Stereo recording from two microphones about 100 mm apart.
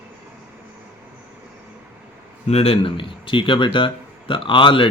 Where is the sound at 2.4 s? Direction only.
85° left.